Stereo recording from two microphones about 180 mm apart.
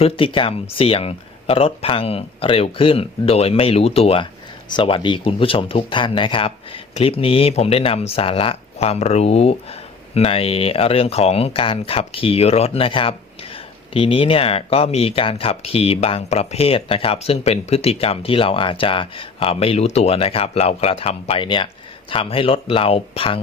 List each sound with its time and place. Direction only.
0.0 s speech: 30° left (ahead or behind)